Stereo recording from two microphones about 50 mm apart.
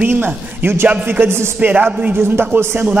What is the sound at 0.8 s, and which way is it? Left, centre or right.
Speech, right.